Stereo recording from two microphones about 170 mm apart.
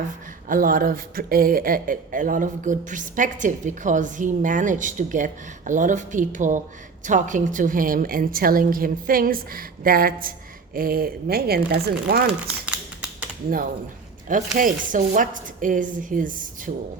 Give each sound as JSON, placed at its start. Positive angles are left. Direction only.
{"t": 0.4, "sound": "a woman's voice", "side_deg": -55}
{"t": 12.6, "sound": "typing", "side_deg": -5}
{"t": 14.3, "sound": "speech", "side_deg": -50}